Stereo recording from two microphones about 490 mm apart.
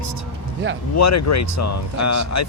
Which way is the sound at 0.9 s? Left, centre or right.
Left.